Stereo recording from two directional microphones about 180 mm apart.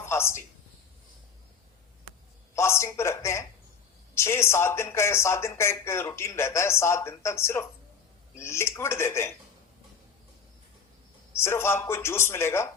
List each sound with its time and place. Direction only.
0.0 s a sound: 15° left (ahead or behind)
2.6 s speech: 15° left (ahead or behind)
11.3 s speech: 15° left (ahead or behind)